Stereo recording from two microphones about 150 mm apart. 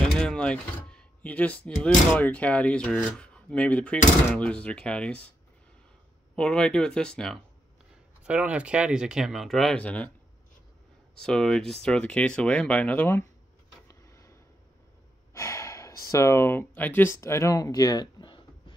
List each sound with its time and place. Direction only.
0.0 s a sound: 5° left (ahead or behind)
1.8 s speech: 10° left (ahead or behind)
6.3 s speech: 5° left (ahead or behind)
8.2 s speech: 10° right (ahead or behind); by 10.1 s 10° left (ahead or behind)
11.1 s speech: 5° left (ahead or behind)
13.8 s a sound: 20° left (ahead or behind)
15.3 s speech: 20° left (ahead or behind)